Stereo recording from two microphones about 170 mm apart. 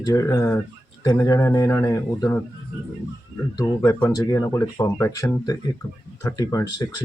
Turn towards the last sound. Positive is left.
turn(degrees=20)  # may be behind; listen again after turning